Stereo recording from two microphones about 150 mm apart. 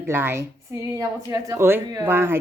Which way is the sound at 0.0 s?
15° right (ahead or behind).